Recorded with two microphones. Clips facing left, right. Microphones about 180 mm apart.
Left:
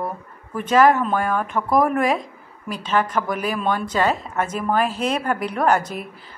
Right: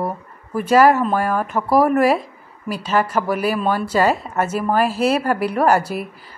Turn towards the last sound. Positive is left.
turn(degrees=-10)  # may be behind; listen again after turning